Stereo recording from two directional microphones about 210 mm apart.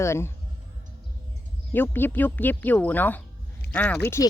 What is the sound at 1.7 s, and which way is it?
Speech, 10° left (ahead or behind).